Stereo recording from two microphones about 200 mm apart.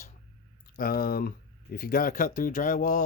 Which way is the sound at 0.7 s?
50° left (ahead or behind).